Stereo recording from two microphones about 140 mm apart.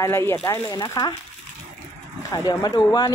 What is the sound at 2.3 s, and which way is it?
Speech, 25° left (ahead or behind).